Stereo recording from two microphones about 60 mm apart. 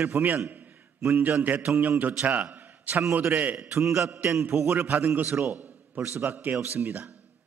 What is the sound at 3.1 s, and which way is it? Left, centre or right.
Speech, right.